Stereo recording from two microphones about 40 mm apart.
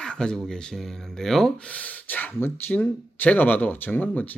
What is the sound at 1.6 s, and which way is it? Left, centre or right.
Speech, left.